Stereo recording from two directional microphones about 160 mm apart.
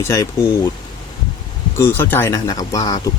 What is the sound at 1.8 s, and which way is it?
Speech, 15° left (ahead or behind).